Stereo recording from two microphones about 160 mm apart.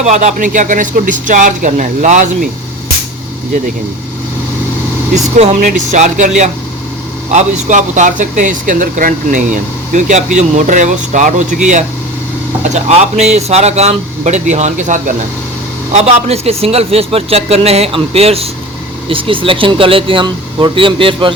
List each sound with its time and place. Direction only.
0.0 s a man's voice: 45° right (ahead or behind)
5.1 s a man's voice: 50° right (ahead or behind); by 21.3 s 35° right (ahead or behind)